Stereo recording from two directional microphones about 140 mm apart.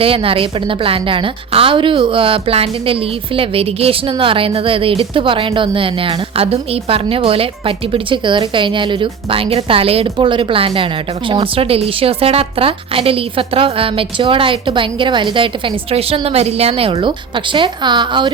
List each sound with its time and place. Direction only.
0.0 s a woman's voice: 40° right (ahead or behind)